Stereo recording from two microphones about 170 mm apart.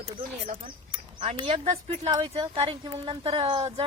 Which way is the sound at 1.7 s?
40° right (ahead or behind).